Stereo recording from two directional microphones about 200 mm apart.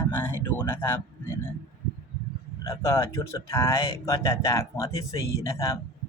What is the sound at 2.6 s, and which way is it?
Speech, 15° left (ahead or behind).